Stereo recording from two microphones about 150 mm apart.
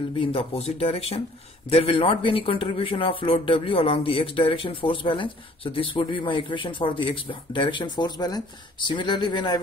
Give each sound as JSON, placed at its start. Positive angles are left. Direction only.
{"t": 0.2, "sound": "speech", "side_deg": 40}